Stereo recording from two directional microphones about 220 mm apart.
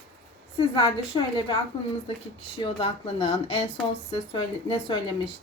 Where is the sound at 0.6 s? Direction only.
20° left (ahead or behind).